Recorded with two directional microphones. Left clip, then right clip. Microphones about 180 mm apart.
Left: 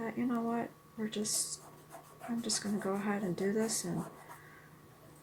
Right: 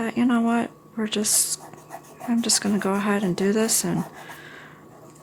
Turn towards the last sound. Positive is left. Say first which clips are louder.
# right 12 dB
turn(degrees=-45)  # may be behind; listen again after turning